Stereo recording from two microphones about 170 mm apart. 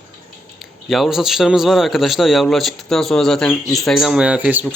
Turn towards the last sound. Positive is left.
turn(degrees=-10)  # may be behind; listen again after turning